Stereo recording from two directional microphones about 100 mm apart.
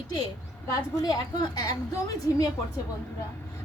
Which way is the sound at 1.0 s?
45° left (ahead or behind).